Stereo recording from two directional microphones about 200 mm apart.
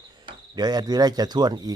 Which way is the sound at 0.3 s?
20° right (ahead or behind).